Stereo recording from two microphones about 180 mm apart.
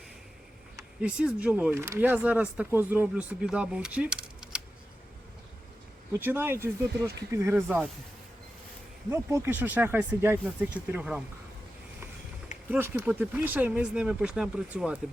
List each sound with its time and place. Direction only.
1.0 s speech: 5° right (ahead or behind)
6.1 s speech: 10° right (ahead or behind)
9.0 s speech: 15° right (ahead or behind)
12.7 s speech: 10° right (ahead or behind)